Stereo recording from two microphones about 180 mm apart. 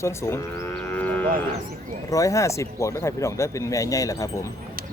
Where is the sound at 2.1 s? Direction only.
20° left (ahead or behind).